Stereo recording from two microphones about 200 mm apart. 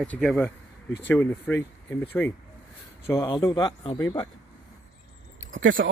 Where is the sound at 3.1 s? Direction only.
20° left (ahead or behind).